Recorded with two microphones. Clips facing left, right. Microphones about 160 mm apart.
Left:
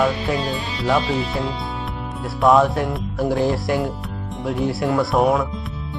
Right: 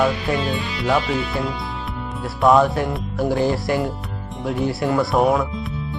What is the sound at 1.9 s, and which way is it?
Speech, centre (ahead or behind).